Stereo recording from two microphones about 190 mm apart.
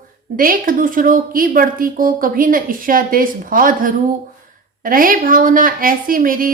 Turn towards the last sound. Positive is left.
turn(degrees=-45)  # may be behind; listen again after turning